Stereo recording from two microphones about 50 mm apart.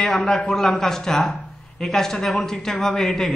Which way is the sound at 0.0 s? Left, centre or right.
Centre.